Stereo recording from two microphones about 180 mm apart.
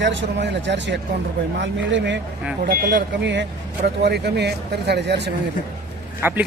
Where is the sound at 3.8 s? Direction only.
65° right (ahead or behind).